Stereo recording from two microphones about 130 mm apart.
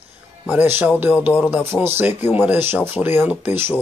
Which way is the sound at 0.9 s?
15° right (ahead or behind).